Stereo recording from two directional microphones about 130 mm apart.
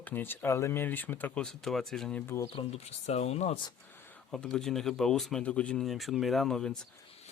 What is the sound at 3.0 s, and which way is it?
Speech, 55° left (ahead or behind).